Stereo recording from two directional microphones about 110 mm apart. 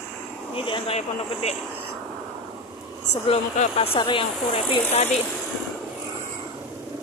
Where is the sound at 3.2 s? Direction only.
65° left (ahead or behind).